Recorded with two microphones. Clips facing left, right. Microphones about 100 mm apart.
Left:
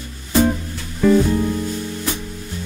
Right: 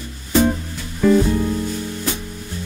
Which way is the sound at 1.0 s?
Centre (ahead or behind).